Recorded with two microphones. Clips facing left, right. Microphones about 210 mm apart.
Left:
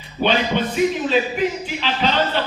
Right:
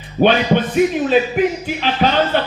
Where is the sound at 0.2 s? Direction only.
50° right (ahead or behind).